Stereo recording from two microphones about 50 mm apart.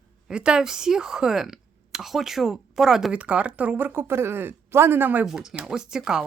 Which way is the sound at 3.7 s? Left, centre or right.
Right.